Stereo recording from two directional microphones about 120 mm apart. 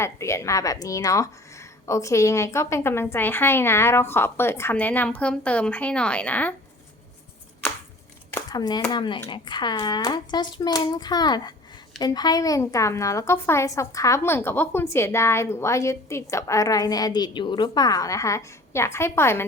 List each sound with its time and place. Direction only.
0.0 s a woman's voice: 25° left (ahead or behind)
8.4 s a child's voice: 35° left (ahead or behind)